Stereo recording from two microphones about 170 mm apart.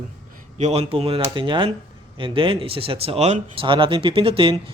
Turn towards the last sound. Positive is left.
turn(degrees=-30)  # may be behind; listen again after turning